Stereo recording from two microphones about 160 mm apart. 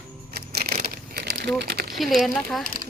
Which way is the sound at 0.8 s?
80° right.